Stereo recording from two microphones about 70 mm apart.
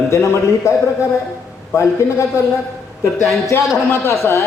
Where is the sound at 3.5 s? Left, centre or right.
Left.